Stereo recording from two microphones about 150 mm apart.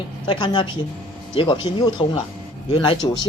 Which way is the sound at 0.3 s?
30° left (ahead or behind).